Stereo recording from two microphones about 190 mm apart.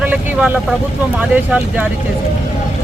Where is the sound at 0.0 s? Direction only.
10° right (ahead or behind).